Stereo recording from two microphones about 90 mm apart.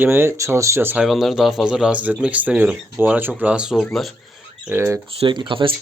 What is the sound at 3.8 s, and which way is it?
Speech, centre (ahead or behind).